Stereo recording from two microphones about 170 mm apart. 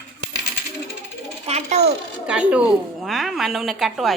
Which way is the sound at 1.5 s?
40° right (ahead or behind).